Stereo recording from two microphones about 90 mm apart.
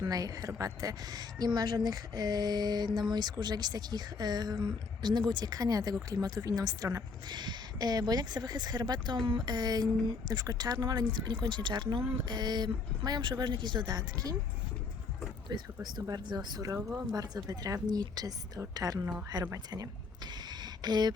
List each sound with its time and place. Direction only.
0.0 s a woman's voice: 45° right (ahead or behind)
7.3 s a woman's voice: 55° right (ahead or behind)
15.4 s a woman's voice: 50° right (ahead or behind)
20.5 s a sound: 50° right (ahead or behind)